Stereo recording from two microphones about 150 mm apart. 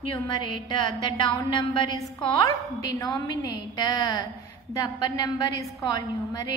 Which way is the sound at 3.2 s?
25° left (ahead or behind).